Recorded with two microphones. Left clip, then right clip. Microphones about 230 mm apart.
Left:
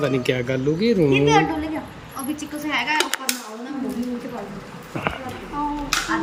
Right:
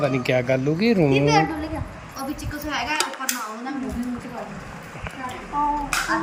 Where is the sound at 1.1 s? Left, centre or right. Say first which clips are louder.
Left 3 dB; centre.